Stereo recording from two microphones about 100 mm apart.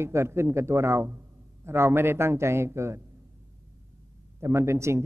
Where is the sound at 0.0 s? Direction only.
25° right (ahead or behind).